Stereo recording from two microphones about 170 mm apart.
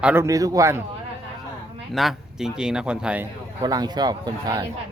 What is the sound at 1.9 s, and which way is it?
A man's voice, centre (ahead or behind).